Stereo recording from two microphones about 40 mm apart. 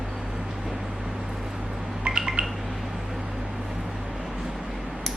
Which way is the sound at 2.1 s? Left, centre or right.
Right.